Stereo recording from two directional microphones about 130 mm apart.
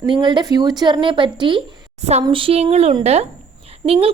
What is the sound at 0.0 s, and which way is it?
A woman's voice, 35° right (ahead or behind).